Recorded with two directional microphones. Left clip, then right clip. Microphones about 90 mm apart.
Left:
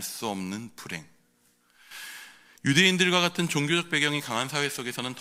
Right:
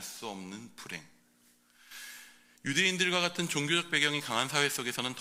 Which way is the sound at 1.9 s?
75° left (ahead or behind).